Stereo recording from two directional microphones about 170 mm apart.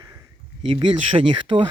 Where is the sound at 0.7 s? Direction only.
30° right (ahead or behind).